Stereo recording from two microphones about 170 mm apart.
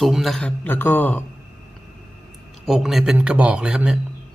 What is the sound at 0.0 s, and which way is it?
A man's voice, centre (ahead or behind).